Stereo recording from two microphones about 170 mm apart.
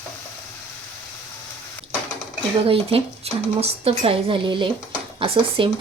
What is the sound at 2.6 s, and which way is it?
Speech, 35° right (ahead or behind).